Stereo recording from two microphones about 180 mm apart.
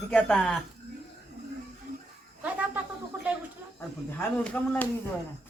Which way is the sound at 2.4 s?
10° right (ahead or behind).